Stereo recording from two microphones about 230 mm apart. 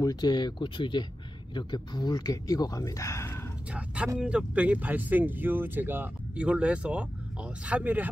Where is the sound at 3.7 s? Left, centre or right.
Centre.